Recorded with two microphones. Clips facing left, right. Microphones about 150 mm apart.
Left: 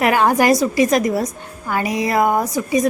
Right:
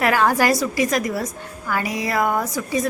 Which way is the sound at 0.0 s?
20° left (ahead or behind).